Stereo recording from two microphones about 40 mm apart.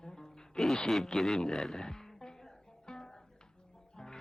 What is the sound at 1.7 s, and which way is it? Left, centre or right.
Music, centre.